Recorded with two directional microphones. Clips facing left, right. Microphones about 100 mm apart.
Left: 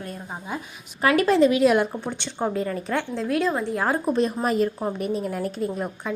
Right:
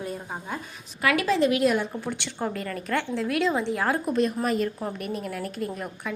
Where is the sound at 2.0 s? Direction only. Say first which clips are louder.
Left 3 dB; 20° left (ahead or behind).